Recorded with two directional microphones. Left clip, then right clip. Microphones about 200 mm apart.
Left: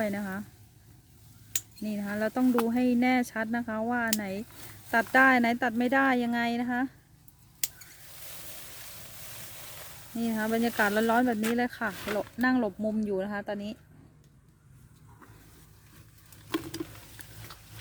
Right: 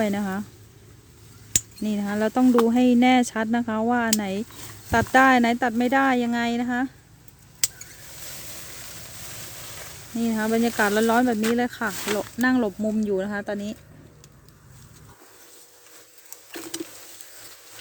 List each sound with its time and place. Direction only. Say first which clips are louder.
0.0 s speech: right 6 dB; 15° right (ahead or behind)
1.8 s speech: right 4 dB; 15° right (ahead or behind)
9.7 s speech: right 6 dB; centre (ahead or behind)